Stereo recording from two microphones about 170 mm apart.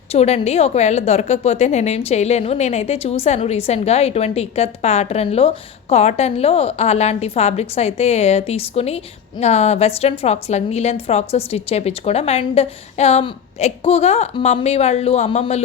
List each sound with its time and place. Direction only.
0.1 s a woman's voice: 35° left (ahead or behind)